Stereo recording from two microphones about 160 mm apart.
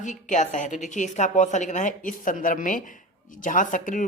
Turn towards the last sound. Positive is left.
turn(degrees=55)  # may be behind; listen again after turning